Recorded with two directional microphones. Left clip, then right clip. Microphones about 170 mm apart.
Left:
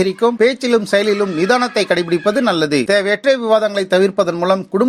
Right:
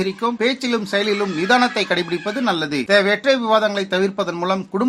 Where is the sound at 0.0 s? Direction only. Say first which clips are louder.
Left 7 dB; 30° left (ahead or behind).